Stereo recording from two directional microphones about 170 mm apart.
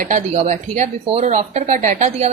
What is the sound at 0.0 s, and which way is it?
A woman's voice, 45° right (ahead or behind).